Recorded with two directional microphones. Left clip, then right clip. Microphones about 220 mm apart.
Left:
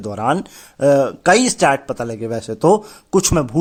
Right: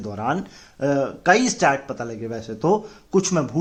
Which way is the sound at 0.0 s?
50° left (ahead or behind).